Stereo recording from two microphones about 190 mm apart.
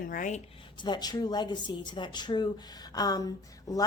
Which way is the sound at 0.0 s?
45° left (ahead or behind).